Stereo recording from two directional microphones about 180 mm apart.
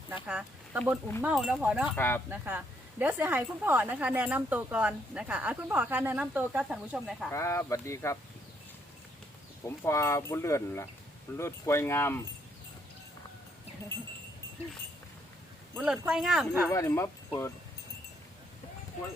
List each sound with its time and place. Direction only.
0.3 s speech: 5° right (ahead or behind)
2.0 s speech: 10° left (ahead or behind)
2.3 s speech: 10° right (ahead or behind)
7.3 s speech: 15° left (ahead or behind)
9.6 s speech: 15° left (ahead or behind)
15.7 s speech: 5° right (ahead or behind)
16.7 s speech: 15° left (ahead or behind)